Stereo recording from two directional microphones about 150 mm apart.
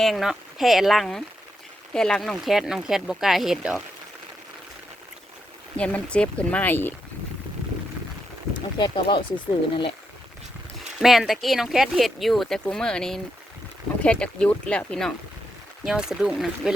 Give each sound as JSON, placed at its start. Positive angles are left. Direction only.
{"t": 0.0, "sound": "speech", "side_deg": 0}
{"t": 5.7, "sound": "speech", "side_deg": 10}
{"t": 8.8, "sound": "speech", "side_deg": 35}
{"t": 11.0, "sound": "speech", "side_deg": 0}